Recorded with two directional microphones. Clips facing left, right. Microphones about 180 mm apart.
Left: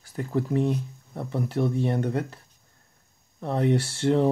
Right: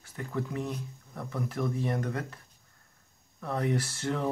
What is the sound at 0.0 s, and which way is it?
Speech, 35° left (ahead or behind).